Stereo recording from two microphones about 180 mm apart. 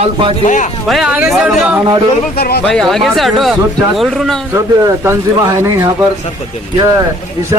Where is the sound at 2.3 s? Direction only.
60° left (ahead or behind).